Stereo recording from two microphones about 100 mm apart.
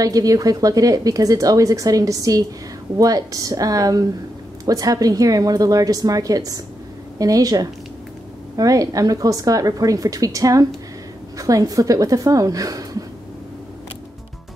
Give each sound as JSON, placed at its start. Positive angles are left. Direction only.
{"t": 0.0, "sound": "a woman's voice", "side_deg": -35}